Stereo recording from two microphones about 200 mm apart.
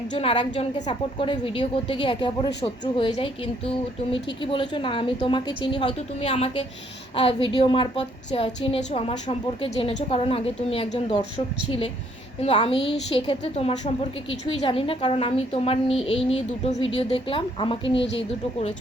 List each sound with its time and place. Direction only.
0.1 s a woman's voice: 25° left (ahead or behind)